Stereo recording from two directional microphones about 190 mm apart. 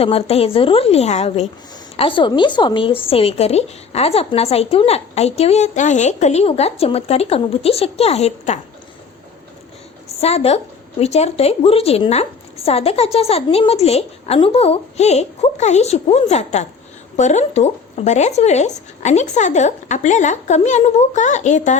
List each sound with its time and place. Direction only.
0.0 s a woman's voice: 30° left (ahead or behind)
10.1 s a woman's voice: 35° left (ahead or behind)